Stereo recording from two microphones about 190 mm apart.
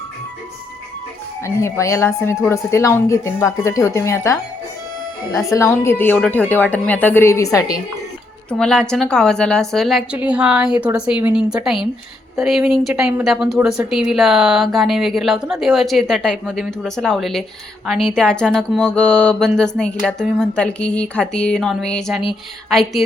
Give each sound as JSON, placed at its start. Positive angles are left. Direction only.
{"t": 1.5, "sound": "a woman's voice", "side_deg": 15}
{"t": 8.4, "sound": "speech", "side_deg": 5}